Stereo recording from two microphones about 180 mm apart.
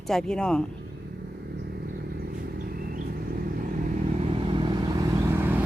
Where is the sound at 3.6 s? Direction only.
45° right (ahead or behind).